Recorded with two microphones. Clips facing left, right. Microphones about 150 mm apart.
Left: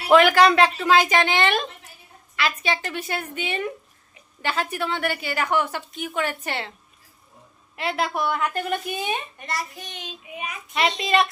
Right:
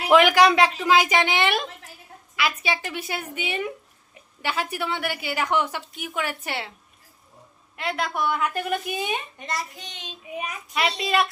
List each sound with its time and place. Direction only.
0.1 s a woman's voice: 15° right (ahead or behind)
7.8 s a woman's voice: centre (ahead or behind)
9.5 s speech: 20° right (ahead or behind)
10.8 s a woman's voice: 5° right (ahead or behind)